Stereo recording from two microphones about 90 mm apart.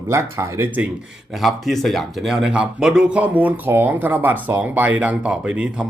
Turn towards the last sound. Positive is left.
turn(degrees=-10)  # may be behind; listen again after turning